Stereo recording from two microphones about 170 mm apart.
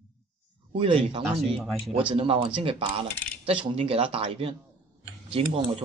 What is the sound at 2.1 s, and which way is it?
A man's voice, 35° right (ahead or behind).